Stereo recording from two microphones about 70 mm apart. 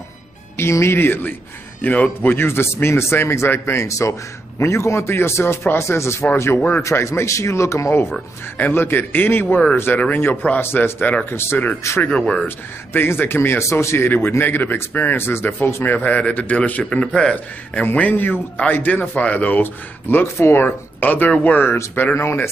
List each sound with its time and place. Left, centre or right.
0.6 s a man's voice: left
8.5 s a man's voice: left
12.0 s speech: centre
12.4 s speech: left
21.5 s a man's voice: left